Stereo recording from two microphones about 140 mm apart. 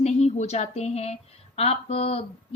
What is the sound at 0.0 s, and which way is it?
A woman's voice, 50° left (ahead or behind).